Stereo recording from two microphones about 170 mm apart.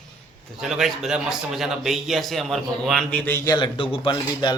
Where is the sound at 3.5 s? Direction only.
30° left (ahead or behind).